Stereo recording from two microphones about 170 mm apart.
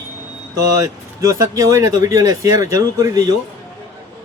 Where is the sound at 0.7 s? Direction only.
20° right (ahead or behind).